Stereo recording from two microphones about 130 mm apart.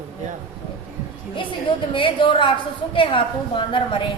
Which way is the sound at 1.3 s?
40° left (ahead or behind).